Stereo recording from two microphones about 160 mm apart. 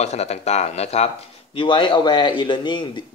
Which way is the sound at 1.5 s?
30° left (ahead or behind).